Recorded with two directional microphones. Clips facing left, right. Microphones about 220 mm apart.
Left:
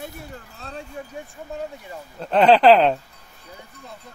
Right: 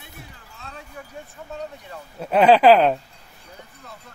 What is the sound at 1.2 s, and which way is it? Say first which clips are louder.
Speech: left 2 dB; 15° left (ahead or behind).